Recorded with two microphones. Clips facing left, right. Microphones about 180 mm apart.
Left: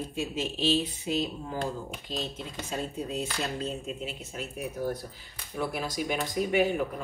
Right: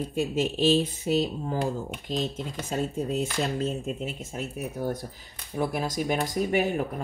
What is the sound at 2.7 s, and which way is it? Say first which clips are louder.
Speech: right 5 dB; 45° right (ahead or behind).